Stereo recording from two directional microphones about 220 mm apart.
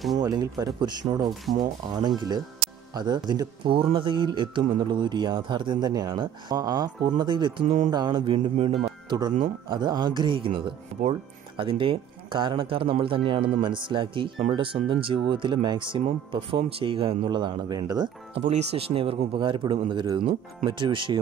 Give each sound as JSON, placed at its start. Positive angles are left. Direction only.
{"t": 0.2, "sound": "a man's voice", "side_deg": -15}
{"t": 18.5, "sound": "a man's voice", "side_deg": -30}